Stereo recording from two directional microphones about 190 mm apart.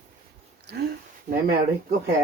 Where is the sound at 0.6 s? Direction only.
60° right (ahead or behind).